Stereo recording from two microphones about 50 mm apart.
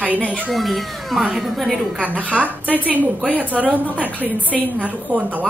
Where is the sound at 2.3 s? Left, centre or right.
Right.